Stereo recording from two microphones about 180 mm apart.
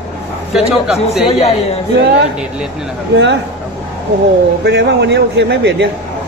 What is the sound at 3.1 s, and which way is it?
Speech, 75° right (ahead or behind).